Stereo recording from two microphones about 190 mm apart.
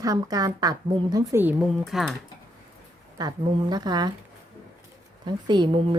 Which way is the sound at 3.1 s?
20° right (ahead or behind).